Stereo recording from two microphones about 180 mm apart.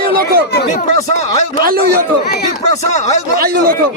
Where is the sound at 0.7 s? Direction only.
45° left (ahead or behind).